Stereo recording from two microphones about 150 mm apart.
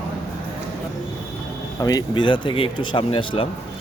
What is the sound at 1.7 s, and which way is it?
Speech, 25° left (ahead or behind).